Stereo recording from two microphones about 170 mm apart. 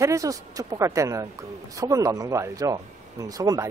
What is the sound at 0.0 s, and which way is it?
Speech, 20° right (ahead or behind).